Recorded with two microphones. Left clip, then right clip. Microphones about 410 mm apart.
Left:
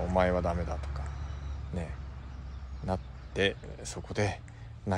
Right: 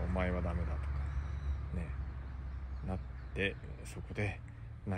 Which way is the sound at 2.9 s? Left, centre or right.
Centre.